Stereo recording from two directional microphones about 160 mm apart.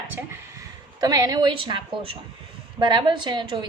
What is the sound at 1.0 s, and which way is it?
A woman's voice, 25° right (ahead or behind).